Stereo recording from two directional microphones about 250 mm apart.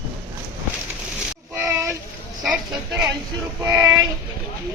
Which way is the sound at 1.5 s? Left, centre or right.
Centre.